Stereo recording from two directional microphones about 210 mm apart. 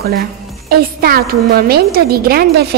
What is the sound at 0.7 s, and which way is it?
A woman's voice, 45° right (ahead or behind).